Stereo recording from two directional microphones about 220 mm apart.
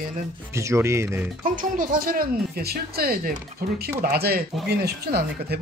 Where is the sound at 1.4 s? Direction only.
40° right (ahead or behind).